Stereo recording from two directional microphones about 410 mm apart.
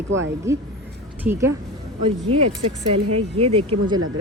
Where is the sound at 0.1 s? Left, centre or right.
Right.